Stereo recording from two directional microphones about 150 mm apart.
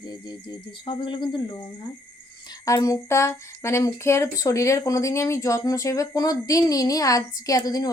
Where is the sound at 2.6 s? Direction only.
20° left (ahead or behind).